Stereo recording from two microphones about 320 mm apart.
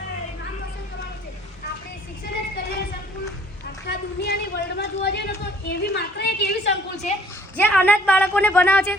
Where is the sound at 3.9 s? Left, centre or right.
Left.